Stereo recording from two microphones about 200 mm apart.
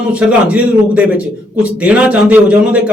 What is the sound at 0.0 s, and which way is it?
A man's voice, 5° right (ahead or behind).